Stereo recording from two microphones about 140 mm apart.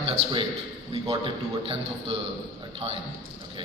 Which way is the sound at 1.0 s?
40° right (ahead or behind).